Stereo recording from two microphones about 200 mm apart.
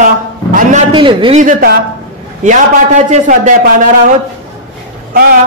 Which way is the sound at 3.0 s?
35° right (ahead or behind).